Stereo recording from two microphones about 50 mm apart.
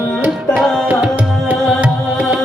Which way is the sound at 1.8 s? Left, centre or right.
Centre.